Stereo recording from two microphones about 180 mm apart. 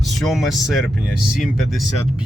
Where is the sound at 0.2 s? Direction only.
Centre (ahead or behind).